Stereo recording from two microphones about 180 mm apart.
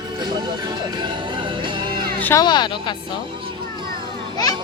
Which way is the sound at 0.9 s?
25° right (ahead or behind).